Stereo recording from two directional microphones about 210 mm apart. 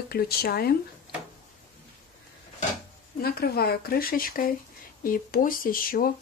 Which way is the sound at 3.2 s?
50° left (ahead or behind).